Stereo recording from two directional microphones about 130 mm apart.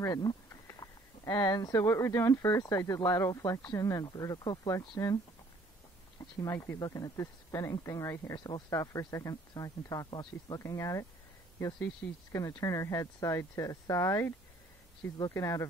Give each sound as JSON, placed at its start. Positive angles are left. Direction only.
{"t": 0.0, "sound": "speech", "side_deg": 30}
{"t": 6.4, "sound": "speech", "side_deg": 25}